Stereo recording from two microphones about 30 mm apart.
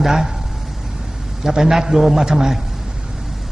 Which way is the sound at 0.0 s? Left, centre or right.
Centre.